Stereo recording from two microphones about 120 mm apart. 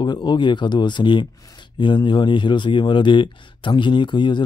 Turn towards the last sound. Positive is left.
turn(degrees=40)  # may be behind; listen again after turning